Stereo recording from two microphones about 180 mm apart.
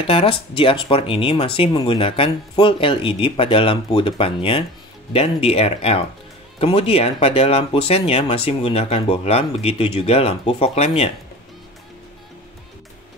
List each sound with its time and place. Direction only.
0.0 s speech: 30° left (ahead or behind)